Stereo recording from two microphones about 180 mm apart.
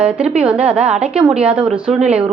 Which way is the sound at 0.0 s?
5° right (ahead or behind).